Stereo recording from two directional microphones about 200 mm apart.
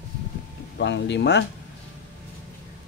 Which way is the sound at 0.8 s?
60° left (ahead or behind).